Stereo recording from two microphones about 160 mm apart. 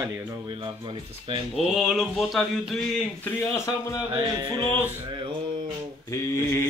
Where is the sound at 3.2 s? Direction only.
20° left (ahead or behind).